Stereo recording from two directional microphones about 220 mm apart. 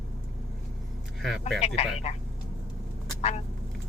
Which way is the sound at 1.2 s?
Centre (ahead or behind).